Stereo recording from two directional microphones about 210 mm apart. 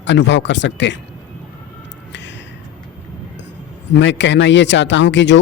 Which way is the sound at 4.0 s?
55° left (ahead or behind).